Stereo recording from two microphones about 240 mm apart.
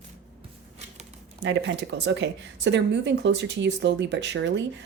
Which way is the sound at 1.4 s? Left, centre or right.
Right.